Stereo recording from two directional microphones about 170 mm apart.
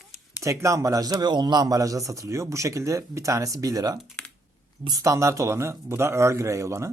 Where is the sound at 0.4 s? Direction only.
20° right (ahead or behind).